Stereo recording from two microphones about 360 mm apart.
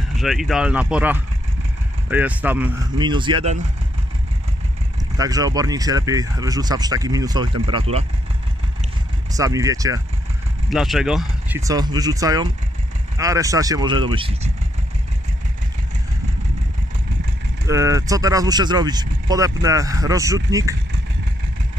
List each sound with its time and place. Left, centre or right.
0.2 s speech: centre
5.1 s speech: centre
9.3 s speech: centre
17.6 s speech: centre